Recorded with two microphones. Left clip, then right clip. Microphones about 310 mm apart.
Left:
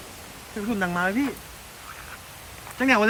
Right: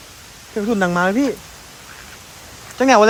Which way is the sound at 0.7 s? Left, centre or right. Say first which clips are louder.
Right 7 dB; left.